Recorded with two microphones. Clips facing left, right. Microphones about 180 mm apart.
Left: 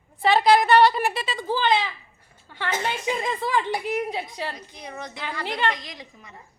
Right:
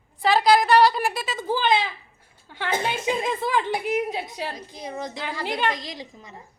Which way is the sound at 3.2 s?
10° right (ahead or behind).